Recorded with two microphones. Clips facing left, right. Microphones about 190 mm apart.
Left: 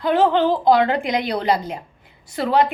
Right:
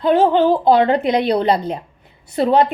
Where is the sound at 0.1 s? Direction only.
20° right (ahead or behind).